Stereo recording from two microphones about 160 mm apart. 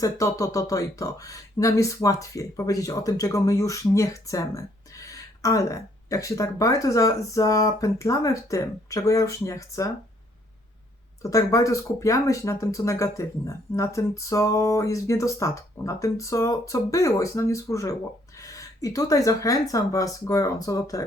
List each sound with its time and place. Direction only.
0.0 s speech: 20° left (ahead or behind)
11.2 s speech: 20° left (ahead or behind)